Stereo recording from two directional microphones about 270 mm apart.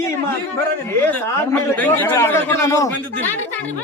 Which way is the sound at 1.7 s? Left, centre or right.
Centre.